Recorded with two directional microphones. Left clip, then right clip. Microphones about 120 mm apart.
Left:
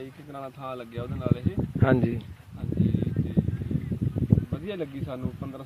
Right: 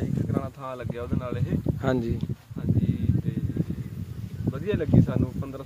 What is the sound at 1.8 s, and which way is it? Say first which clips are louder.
Speech: left 4 dB; 5° right (ahead or behind).